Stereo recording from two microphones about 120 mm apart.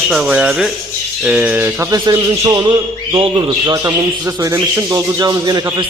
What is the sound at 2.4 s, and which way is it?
A man's voice, 30° right (ahead or behind).